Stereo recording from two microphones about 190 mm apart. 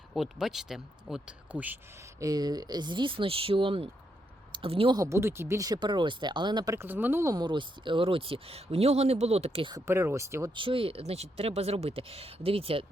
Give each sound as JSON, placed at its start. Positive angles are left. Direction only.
{"t": 0.1, "sound": "speech", "side_deg": 0}
{"t": 9.8, "sound": "speech", "side_deg": -15}
{"t": 10.5, "sound": "speech", "side_deg": -25}